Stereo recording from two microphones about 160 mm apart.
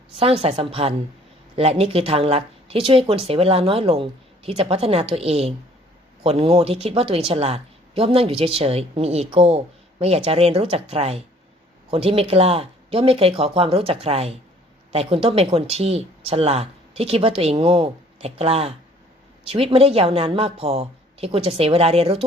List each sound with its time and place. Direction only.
0.2 s speech: 40° right (ahead or behind)